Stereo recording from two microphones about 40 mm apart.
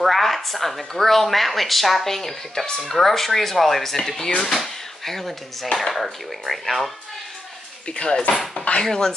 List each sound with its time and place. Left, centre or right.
0.0 s a woman's voice: centre
7.9 s speech: left